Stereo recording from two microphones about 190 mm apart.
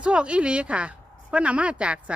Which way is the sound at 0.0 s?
5° right (ahead or behind).